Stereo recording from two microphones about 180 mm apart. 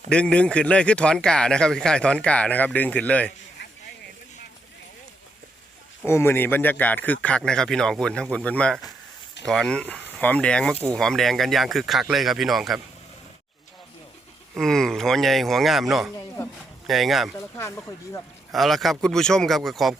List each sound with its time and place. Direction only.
0.1 s speech: 5° left (ahead or behind)
6.1 s a man's voice: 15° left (ahead or behind)
14.5 s speech: centre (ahead or behind)
16.4 s a man's voice: 15° left (ahead or behind)
16.8 s speech: centre (ahead or behind)
17.6 s a man's voice: 15° left (ahead or behind)
18.5 s speech: centre (ahead or behind)